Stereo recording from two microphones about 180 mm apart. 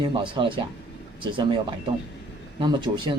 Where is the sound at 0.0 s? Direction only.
30° right (ahead or behind).